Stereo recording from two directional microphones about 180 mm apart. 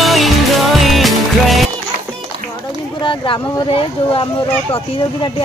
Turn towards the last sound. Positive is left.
turn(degrees=30)  # may be behind; listen again after turning